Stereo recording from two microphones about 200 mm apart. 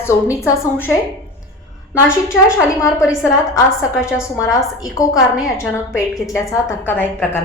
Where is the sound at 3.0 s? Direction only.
5° right (ahead or behind).